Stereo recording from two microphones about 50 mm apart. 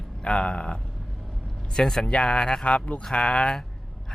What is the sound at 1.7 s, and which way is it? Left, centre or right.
Speech, centre.